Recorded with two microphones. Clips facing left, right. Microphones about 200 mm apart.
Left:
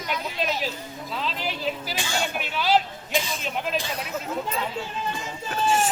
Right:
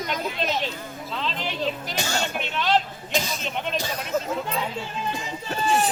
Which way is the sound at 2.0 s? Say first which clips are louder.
Right 1 dB; 40° right (ahead or behind).